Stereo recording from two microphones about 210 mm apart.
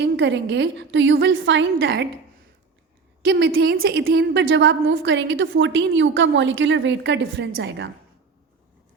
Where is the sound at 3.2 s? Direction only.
55° right (ahead or behind).